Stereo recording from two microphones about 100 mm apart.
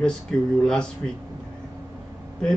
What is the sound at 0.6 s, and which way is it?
Speech, 5° left (ahead or behind).